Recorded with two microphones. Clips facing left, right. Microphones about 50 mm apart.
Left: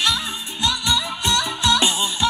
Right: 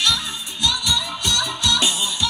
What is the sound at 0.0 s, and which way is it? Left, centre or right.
Music, left.